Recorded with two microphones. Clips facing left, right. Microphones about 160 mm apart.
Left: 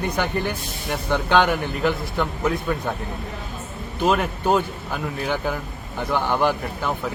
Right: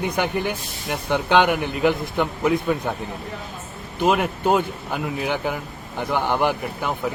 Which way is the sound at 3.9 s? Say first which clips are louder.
Right 1 dB; 10° right (ahead or behind).